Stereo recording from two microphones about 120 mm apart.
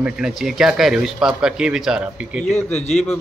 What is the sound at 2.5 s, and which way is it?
Speech, 70° left (ahead or behind).